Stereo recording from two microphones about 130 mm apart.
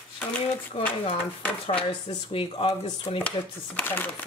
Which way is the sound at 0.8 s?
50° left (ahead or behind).